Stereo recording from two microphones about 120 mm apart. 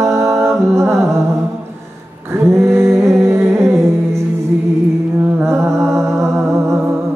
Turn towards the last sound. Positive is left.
turn(degrees=-25)  # may be behind; listen again after turning